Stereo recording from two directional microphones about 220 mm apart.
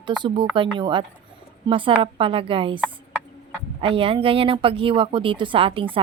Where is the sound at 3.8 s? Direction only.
25° right (ahead or behind).